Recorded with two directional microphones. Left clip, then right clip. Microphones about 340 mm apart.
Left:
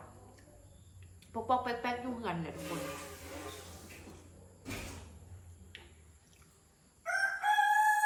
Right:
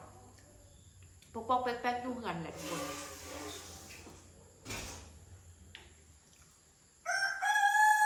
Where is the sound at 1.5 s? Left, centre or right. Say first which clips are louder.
Even; centre.